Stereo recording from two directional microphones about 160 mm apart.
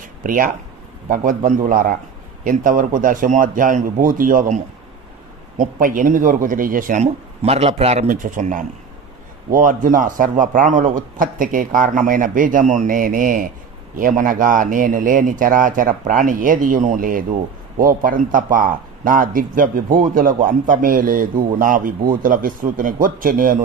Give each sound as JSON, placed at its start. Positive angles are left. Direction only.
{"t": 0.0, "sound": "a sound", "side_deg": -60}
{"t": 1.0, "sound": "a man's voice", "side_deg": -55}
{"t": 5.6, "sound": "a man's voice", "side_deg": -60}